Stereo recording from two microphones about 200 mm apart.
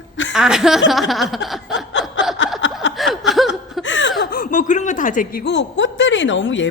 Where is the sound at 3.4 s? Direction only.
70° left (ahead or behind).